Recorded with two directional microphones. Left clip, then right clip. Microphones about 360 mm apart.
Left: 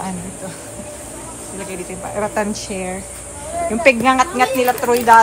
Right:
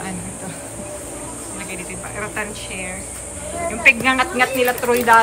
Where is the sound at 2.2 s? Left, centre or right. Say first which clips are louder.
Left 7 dB; centre.